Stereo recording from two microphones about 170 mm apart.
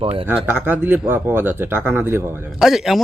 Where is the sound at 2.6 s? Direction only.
Centre (ahead or behind).